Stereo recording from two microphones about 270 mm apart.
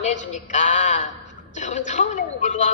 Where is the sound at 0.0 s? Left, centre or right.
Left.